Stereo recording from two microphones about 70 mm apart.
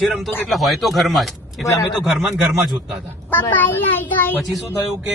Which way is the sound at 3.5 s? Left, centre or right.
Left.